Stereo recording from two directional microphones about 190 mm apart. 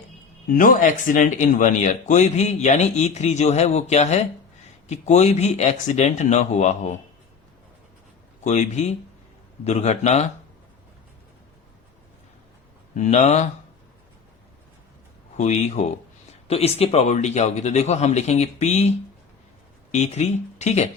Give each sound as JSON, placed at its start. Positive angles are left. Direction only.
{"t": 0.5, "sound": "speech", "side_deg": 45}
{"t": 8.4, "sound": "speech", "side_deg": 35}
{"t": 13.0, "sound": "speech", "side_deg": 35}
{"t": 15.4, "sound": "speech", "side_deg": 35}